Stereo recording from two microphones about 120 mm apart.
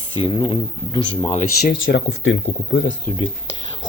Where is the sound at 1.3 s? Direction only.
70° left (ahead or behind).